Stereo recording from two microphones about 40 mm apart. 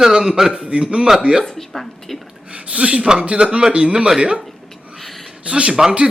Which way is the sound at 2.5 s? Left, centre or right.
Right.